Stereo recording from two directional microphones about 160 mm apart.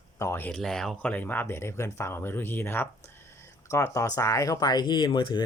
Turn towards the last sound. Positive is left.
turn(degrees=30)  # may be behind; listen again after turning